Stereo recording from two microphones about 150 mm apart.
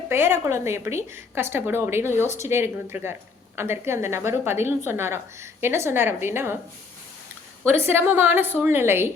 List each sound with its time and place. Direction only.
0.1 s a woman's voice: 15° right (ahead or behind)
2.2 s a woman's voice: 50° left (ahead or behind)
2.5 s a woman's voice: 15° right (ahead or behind)
7.6 s a woman's voice: 15° right (ahead or behind)